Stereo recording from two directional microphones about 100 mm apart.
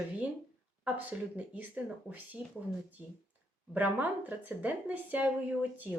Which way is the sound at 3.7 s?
15° right (ahead or behind).